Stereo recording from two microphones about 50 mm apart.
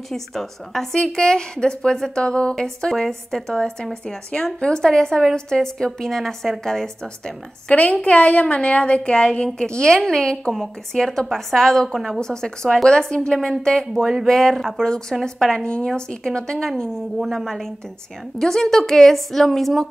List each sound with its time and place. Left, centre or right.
0.1 s a woman's voice: centre
0.9 s a woman's voice: centre
7.9 s a woman's voice: left
10.5 s a woman's voice: centre
12.6 s a woman's voice: centre
12.9 s a woman's voice: centre
14.5 s a woman's voice: centre
14.8 s a woman's voice: centre